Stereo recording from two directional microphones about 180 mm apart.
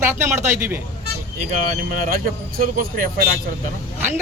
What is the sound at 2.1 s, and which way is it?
Speech, 55° right (ahead or behind).